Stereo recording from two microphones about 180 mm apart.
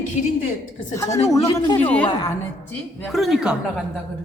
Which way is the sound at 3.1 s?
Centre (ahead or behind).